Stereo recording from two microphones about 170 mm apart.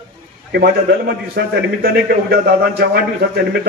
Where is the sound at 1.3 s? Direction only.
60° right (ahead or behind).